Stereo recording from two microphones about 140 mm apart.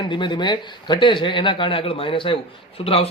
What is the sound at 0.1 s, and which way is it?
A man's voice, 35° left (ahead or behind).